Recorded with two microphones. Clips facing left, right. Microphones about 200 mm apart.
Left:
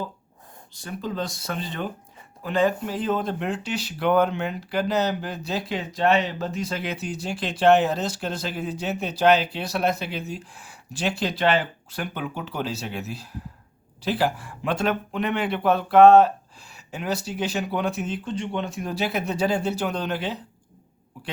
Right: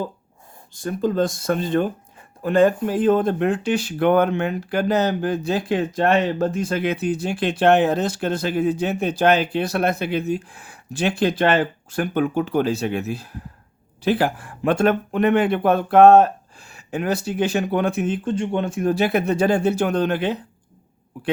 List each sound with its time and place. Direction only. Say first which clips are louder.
0.7 s speech: right 9 dB; 50° right (ahead or behind)